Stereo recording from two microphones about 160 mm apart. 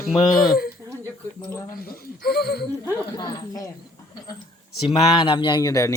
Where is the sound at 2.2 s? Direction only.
75° left (ahead or behind).